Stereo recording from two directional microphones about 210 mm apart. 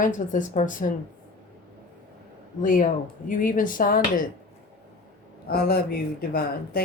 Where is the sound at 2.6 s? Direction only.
40° left (ahead or behind).